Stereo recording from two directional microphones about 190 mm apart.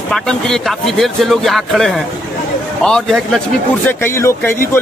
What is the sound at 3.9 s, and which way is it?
Speech, 15° left (ahead or behind).